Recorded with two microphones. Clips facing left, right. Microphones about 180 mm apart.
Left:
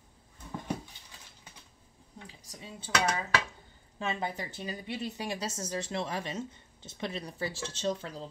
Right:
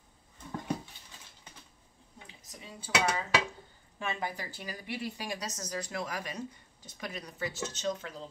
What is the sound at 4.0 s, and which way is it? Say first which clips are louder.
Speech: left 2 dB; 25° left (ahead or behind).